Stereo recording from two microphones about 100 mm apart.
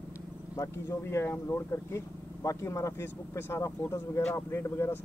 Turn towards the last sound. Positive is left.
turn(degrees=25)  # may be behind; listen again after turning